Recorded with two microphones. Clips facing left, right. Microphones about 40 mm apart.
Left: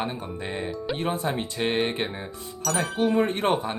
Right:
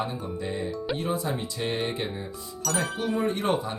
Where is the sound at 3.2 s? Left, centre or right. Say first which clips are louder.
Left 3 dB; left.